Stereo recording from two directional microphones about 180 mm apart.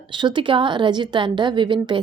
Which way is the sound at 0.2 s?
25° right (ahead or behind).